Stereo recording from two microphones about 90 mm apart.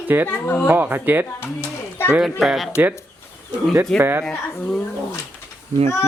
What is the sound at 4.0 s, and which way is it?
Speech, 25° right (ahead or behind).